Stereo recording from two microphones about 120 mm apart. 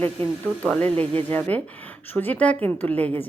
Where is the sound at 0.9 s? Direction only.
55° right (ahead or behind).